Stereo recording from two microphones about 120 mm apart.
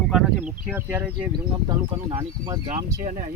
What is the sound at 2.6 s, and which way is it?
Speech, 90° right.